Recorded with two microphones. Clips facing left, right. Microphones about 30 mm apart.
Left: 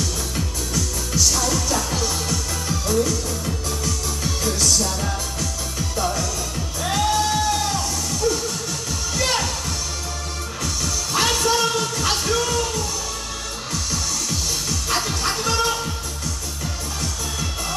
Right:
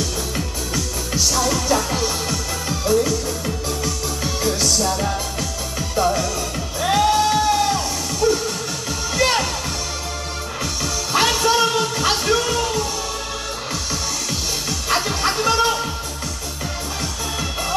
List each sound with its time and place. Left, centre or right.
0.7 s music: centre
10.6 s music: centre
14.7 s music: centre